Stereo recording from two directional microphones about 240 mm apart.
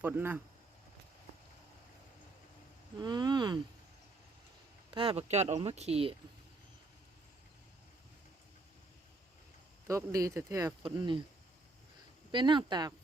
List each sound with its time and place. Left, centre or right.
0.0 s speech: centre
3.0 s speech: centre
4.9 s speech: right
9.8 s speech: centre
12.3 s speech: centre